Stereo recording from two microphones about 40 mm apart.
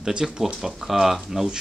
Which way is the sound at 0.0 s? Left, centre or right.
Centre.